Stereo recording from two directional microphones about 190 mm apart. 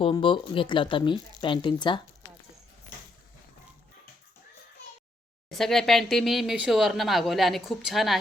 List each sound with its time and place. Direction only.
0.0 s speech: 25° left (ahead or behind)
5.5 s speech: centre (ahead or behind)